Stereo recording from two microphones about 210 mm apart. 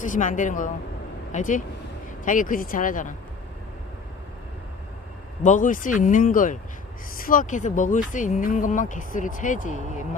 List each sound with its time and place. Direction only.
0.0 s speech: 35° left (ahead or behind)
5.4 s speech: 35° left (ahead or behind)